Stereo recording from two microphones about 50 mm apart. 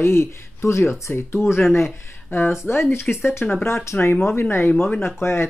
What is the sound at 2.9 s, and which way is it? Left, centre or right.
Speech, left.